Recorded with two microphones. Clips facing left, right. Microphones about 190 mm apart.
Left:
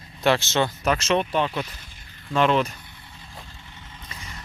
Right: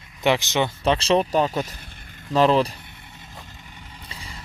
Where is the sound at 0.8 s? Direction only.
30° right (ahead or behind).